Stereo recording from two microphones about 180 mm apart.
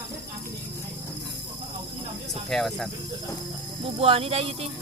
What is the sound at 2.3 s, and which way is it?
Speech, centre (ahead or behind).